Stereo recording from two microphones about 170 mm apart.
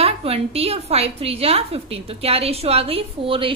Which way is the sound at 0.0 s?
35° right (ahead or behind).